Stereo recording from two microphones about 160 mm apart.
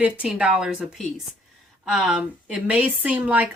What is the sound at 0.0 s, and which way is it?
A woman's voice, 5° right (ahead or behind).